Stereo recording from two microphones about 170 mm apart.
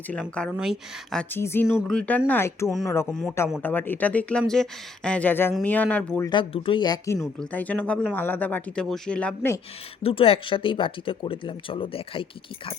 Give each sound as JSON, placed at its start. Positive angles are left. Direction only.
{"t": 0.1, "sound": "speech", "side_deg": 5}
{"t": 6.2, "sound": "speech", "side_deg": 30}
{"t": 7.2, "sound": "speech", "side_deg": 5}
{"t": 10.0, "sound": "speech", "side_deg": 35}